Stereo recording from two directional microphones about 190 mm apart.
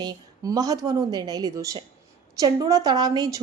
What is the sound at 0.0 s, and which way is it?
Speech, 20° right (ahead or behind).